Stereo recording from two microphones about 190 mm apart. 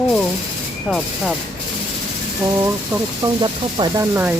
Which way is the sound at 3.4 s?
25° right (ahead or behind).